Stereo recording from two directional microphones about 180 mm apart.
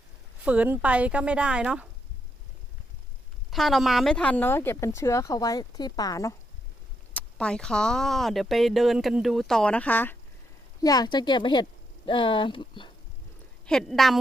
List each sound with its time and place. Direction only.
0.4 s a woman's voice: 10° right (ahead or behind)
3.5 s speech: centre (ahead or behind); by 6.3 s 20° left (ahead or behind)
7.1 s speech: 5° left (ahead or behind)
10.8 s speech: 20° left (ahead or behind)
13.7 s speech: centre (ahead or behind)